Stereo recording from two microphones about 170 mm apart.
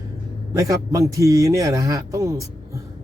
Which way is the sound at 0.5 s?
20° right (ahead or behind).